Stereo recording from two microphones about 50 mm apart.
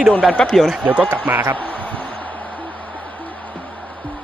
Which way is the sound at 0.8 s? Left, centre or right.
Right.